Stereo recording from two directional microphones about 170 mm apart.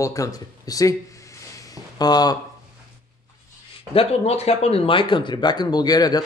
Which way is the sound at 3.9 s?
35° left (ahead or behind).